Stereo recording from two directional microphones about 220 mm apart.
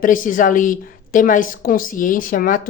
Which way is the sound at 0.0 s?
40° left (ahead or behind).